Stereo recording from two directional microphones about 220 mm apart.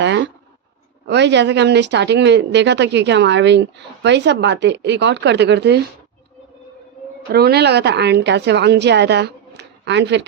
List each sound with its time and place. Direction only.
0.0 s a sound: 55° right (ahead or behind)
1.0 s speech: 50° right (ahead or behind)
7.3 s speech: 45° right (ahead or behind)